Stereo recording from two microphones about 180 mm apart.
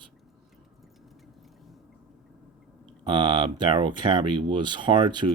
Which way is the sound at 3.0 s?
25° right (ahead or behind).